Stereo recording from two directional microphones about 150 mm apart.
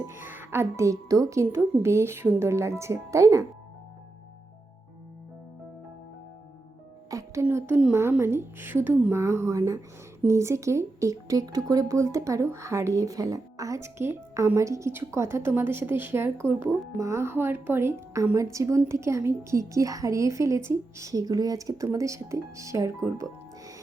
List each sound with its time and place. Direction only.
0.3 s speech: 15° right (ahead or behind)
7.1 s music: 20° right (ahead or behind)
7.4 s a woman's voice: 10° right (ahead or behind)